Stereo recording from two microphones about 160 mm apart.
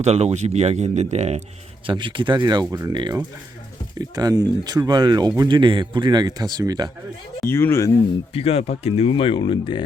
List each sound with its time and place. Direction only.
0.0 s speech: 40° right (ahead or behind)
1.9 s a man's voice: 30° right (ahead or behind)
7.5 s speech: 15° left (ahead or behind)
8.3 s speech: 40° left (ahead or behind)